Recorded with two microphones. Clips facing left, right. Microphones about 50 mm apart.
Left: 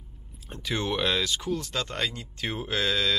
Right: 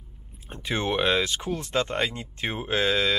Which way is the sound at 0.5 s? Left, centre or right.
Right.